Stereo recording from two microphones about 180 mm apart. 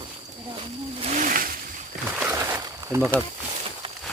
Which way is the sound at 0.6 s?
35° right (ahead or behind).